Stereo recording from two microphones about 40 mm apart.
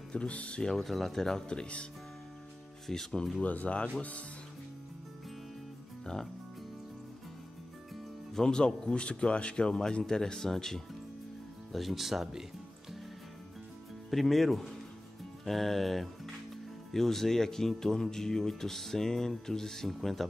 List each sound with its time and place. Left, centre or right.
0.1 s speech: left
0.6 s speech: centre
1.5 s speech: left
2.9 s speech: centre
3.3 s speech: left
8.4 s speech: centre
11.7 s speech: centre
14.1 s speech: centre